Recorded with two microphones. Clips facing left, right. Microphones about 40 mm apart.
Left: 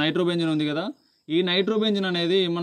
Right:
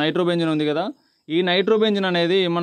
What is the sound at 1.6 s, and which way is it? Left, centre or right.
Speech, right.